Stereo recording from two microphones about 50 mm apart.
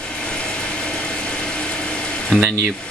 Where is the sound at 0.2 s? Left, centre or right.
Left.